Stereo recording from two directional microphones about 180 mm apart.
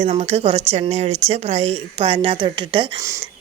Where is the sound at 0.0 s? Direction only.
35° right (ahead or behind).